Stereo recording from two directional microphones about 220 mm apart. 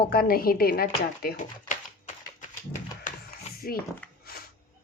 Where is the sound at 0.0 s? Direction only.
45° left (ahead or behind).